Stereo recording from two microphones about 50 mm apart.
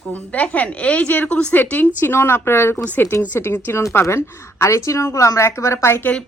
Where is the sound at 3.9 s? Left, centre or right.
Left.